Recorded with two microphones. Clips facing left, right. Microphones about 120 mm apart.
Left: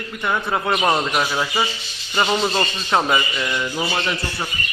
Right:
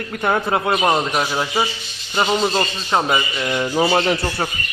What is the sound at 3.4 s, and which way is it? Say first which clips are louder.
Speech: right 5 dB; 35° right (ahead or behind).